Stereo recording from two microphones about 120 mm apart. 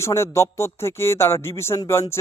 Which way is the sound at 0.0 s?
25° left (ahead or behind).